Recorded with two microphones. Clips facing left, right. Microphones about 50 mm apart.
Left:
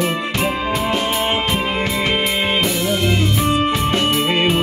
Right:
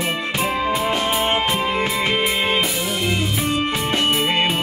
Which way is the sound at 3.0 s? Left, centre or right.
Centre.